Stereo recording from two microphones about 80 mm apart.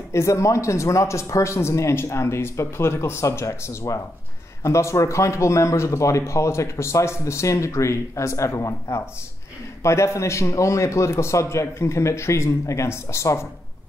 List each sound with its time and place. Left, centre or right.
0.1 s speech: left